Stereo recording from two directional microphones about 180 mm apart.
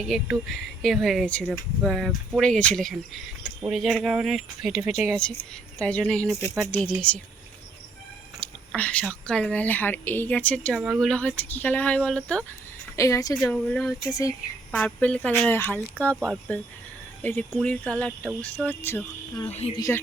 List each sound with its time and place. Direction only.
0.0 s speech: centre (ahead or behind)
4.8 s speech: 15° right (ahead or behind)
5.8 s speech: 5° left (ahead or behind)
8.4 s speech: 5° left (ahead or behind)
13.0 s speech: 20° left (ahead or behind)
13.5 s speech: 5° left (ahead or behind)
14.1 s speech: 20° left (ahead or behind)
14.7 s speech: 5° left (ahead or behind)
17.2 s speech: 10° left (ahead or behind)
19.5 s speech: 35° left (ahead or behind)